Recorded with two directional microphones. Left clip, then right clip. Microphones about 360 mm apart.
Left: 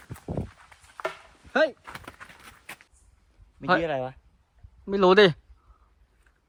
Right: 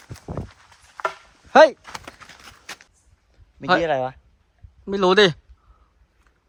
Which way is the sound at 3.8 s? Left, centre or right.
Right.